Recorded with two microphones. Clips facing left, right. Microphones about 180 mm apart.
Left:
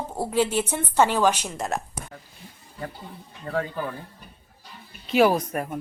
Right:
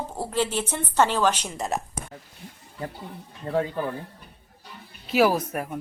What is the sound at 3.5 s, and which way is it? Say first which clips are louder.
Speech: right 2 dB; 20° right (ahead or behind).